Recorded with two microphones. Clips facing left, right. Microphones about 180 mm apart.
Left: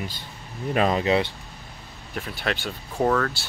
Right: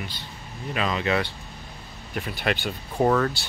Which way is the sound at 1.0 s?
25° left (ahead or behind).